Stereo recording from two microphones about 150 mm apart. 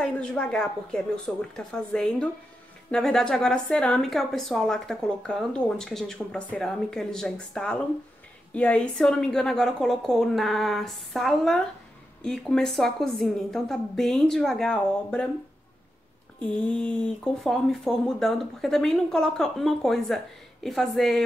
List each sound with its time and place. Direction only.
0.0 s a woman's voice: 5° left (ahead or behind)
16.3 s a woman's voice: 5° left (ahead or behind)